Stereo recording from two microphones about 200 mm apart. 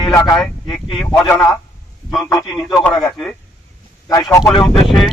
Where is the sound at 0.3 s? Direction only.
Centre (ahead or behind).